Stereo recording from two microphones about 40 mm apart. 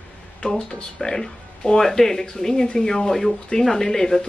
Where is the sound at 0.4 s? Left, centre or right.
Centre.